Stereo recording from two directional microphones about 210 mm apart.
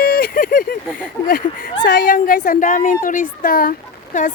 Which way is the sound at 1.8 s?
40° left (ahead or behind).